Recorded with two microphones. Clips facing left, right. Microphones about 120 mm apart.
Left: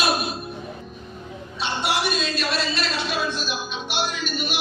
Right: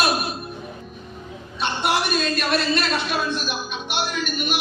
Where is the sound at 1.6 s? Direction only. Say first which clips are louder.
Right 2 dB; 55° right (ahead or behind).